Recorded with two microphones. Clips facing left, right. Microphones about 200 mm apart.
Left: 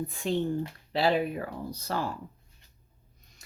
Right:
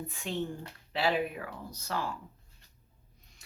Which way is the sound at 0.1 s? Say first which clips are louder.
Left 6 dB; 35° left (ahead or behind).